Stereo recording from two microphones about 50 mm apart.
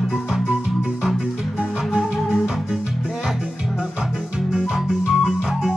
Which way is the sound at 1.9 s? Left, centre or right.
Centre.